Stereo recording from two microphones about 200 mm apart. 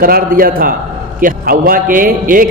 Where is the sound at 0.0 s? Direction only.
45° right (ahead or behind).